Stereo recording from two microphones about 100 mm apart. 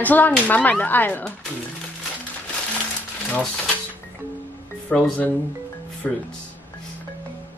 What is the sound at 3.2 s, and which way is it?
Speech, 5° left (ahead or behind).